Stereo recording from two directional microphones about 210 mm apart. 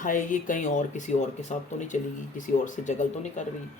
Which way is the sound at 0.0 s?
40° left (ahead or behind).